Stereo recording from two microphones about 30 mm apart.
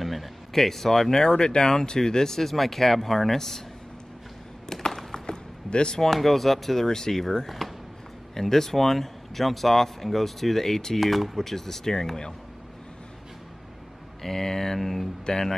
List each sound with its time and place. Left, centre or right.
0.0 s a sound: centre
0.5 s speech: centre
1.1 s speech: left
4.8 s a sound: left
5.7 s speech: left
5.9 s speech: centre
8.4 s speech: centre
11.0 s speech: centre; by 12.4 s left
14.3 s speech: centre
15.3 s speech: left